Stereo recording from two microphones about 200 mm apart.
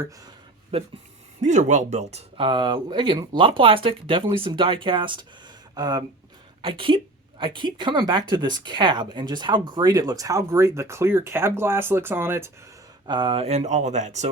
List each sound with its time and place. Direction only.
0.7 s a woman's voice: 30° right (ahead or behind); by 12.5 s 10° right (ahead or behind)
13.1 s speech: 25° right (ahead or behind)